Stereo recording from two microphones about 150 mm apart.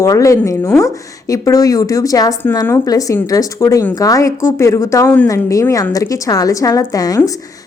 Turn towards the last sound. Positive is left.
turn(degrees=25)  # may be behind; listen again after turning